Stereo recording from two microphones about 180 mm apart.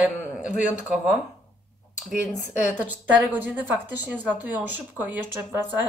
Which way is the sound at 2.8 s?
10° right (ahead or behind).